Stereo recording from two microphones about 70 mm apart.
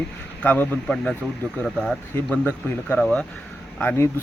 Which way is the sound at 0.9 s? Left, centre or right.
Centre.